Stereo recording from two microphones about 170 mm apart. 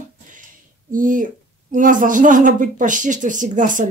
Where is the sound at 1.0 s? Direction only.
50° right (ahead or behind).